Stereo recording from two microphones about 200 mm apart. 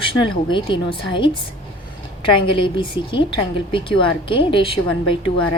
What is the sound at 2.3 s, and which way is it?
A woman's voice, 25° left (ahead or behind).